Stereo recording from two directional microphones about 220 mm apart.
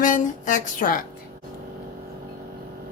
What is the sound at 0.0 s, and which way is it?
A woman's voice, 35° left (ahead or behind).